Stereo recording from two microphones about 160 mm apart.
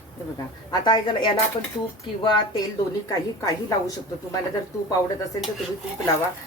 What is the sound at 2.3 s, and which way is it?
Speech, 30° left (ahead or behind).